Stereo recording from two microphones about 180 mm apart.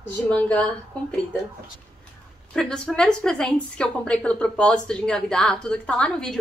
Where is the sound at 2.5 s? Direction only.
5° left (ahead or behind).